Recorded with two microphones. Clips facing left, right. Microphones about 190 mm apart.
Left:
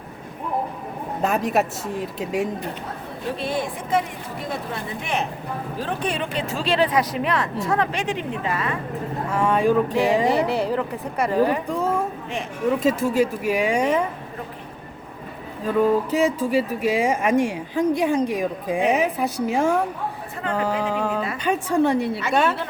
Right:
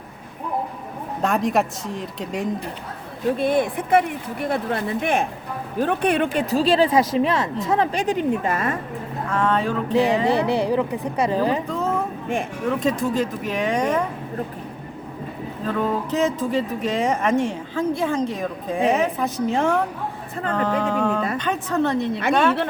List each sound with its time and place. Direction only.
1.2 s speech: 5° left (ahead or behind)
3.3 s speech: 55° right (ahead or behind)
6.4 s speech: 35° right (ahead or behind)
7.9 s a woman's voice: 40° right (ahead or behind)
9.3 s speech: 10° left (ahead or behind)
10.4 s a woman's voice: 15° right (ahead or behind)
11.7 s a sound: 10° left (ahead or behind)
12.8 s speech: 5° left (ahead or behind)
15.6 s speech: 10° left (ahead or behind)
20.5 s a sound: 10° left (ahead or behind)
21.3 s speech: 10° left (ahead or behind)